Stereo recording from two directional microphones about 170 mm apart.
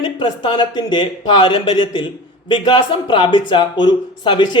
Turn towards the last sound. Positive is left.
turn(degrees=25)  # may be behind; listen again after turning